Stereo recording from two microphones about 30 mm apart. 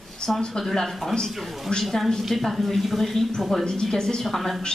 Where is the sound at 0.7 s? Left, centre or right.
Centre.